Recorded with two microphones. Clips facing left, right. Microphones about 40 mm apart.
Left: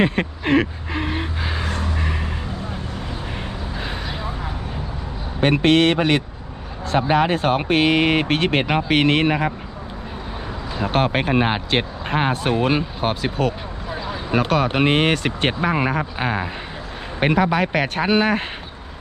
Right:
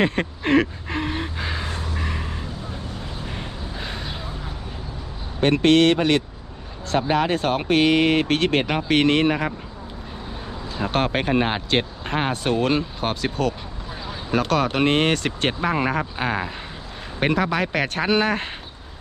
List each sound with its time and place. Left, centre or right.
0.0 s a sound: centre
5.4 s speech: centre
10.8 s speech: centre